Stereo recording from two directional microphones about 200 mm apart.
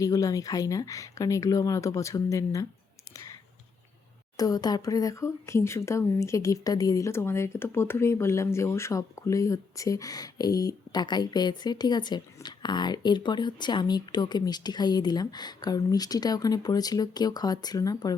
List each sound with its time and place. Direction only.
0.0 s speech: 15° left (ahead or behind)
3.1 s clicking: 15° left (ahead or behind)
4.4 s speech: 20° left (ahead or behind)